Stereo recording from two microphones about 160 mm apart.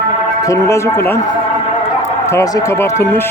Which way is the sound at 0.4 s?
20° left (ahead or behind).